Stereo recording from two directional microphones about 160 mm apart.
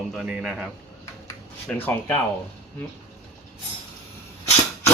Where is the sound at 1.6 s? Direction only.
10° left (ahead or behind).